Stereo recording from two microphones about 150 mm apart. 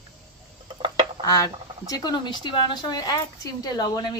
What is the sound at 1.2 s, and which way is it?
A woman's voice, 25° left (ahead or behind).